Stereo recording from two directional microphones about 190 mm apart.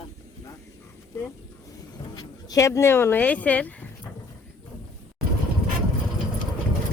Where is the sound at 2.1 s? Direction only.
20° left (ahead or behind).